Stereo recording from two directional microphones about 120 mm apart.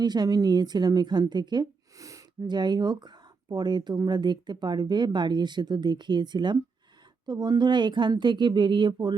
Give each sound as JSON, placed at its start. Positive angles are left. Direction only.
{"t": 0.0, "sound": "a woman's voice", "side_deg": -35}